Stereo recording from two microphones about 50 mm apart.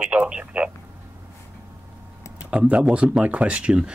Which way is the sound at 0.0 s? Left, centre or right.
Right.